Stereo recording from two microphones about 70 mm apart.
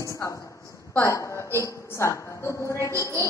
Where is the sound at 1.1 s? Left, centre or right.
Left.